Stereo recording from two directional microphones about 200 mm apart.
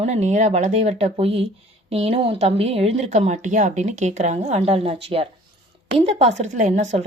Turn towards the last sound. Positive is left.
turn(degrees=-35)  # may be behind; listen again after turning